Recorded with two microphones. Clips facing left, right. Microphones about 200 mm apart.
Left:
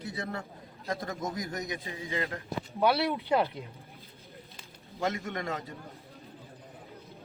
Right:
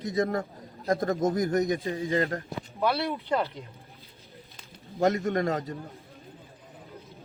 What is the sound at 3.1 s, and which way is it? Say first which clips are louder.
Speech: left 1 dB; 10° left (ahead or behind).